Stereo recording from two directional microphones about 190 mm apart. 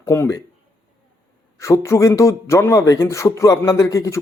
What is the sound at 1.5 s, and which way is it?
Speech, 15° left (ahead or behind).